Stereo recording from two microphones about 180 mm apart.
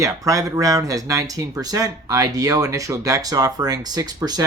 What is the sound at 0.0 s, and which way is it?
Speech, 15° right (ahead or behind).